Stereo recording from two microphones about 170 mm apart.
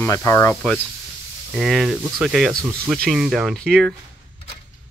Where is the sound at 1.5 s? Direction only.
Centre (ahead or behind).